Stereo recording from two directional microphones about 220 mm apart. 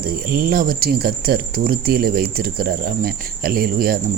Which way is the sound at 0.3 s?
40° right (ahead or behind).